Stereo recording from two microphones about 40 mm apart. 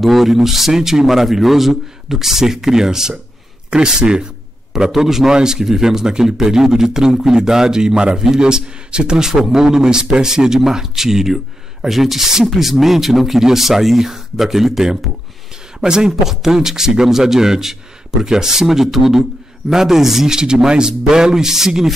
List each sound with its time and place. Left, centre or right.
0.0 s a man's voice: centre
4.7 s a man's voice: centre